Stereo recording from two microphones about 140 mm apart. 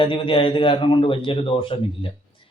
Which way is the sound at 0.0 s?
40° left (ahead or behind).